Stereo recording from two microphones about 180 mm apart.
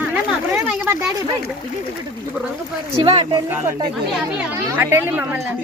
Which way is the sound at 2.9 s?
30° right (ahead or behind).